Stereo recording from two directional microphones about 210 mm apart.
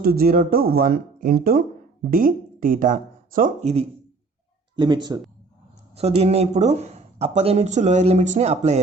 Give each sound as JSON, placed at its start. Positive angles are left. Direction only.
{"t": 0.0, "sound": "speech", "side_deg": -45}
{"t": 4.8, "sound": "speech", "side_deg": -20}